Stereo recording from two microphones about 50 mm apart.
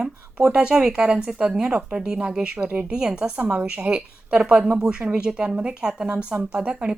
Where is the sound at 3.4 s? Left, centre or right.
Right.